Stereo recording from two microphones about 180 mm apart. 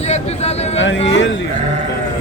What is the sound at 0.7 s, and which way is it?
Speech, 90° left.